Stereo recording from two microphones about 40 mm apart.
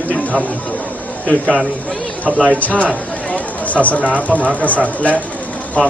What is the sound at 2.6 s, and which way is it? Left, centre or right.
Speech, left.